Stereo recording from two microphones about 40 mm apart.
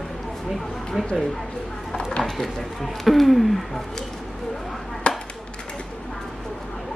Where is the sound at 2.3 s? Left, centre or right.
Centre.